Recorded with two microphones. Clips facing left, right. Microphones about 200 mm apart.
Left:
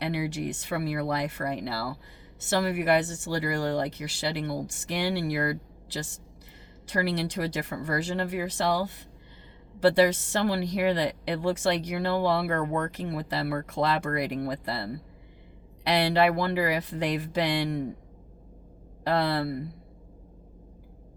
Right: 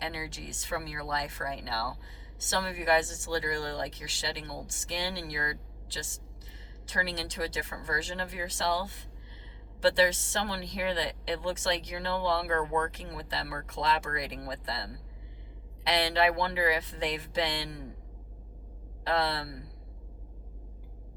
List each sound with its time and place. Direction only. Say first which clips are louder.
0.0 s speech: left 9 dB; 65° left (ahead or behind)
10.4 s speech: left 8 dB; 60° left (ahead or behind)
16.1 s speech: left 4 dB; 60° left (ahead or behind)
19.3 s speech: left 9 dB; 55° left (ahead or behind)